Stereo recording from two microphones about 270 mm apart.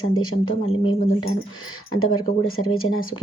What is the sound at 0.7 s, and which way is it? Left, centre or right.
Speech, left.